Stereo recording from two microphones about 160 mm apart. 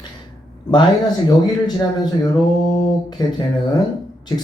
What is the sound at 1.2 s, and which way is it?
Speech, 25° left (ahead or behind).